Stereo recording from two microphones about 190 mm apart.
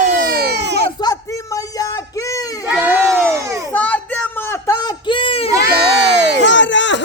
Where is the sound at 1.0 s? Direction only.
15° left (ahead or behind).